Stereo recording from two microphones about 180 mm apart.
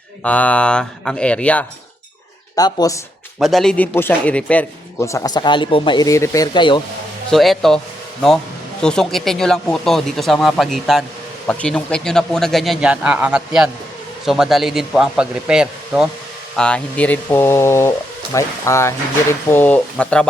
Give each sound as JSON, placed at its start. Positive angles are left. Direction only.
{"t": 0.2, "sound": "a man's voice", "side_deg": 10}
{"t": 2.6, "sound": "speech", "side_deg": 20}
{"t": 3.3, "sound": "a man's voice", "side_deg": 0}
{"t": 7.3, "sound": "speech", "side_deg": 0}
{"t": 8.8, "sound": "a man's voice", "side_deg": 5}